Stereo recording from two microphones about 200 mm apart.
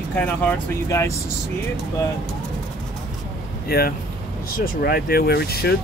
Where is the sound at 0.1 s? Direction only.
5° left (ahead or behind).